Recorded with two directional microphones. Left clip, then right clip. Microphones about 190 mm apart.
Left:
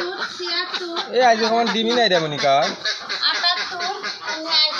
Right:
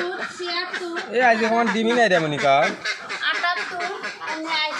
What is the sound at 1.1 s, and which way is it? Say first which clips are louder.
A man's voice: left 2 dB; 15° right (ahead or behind).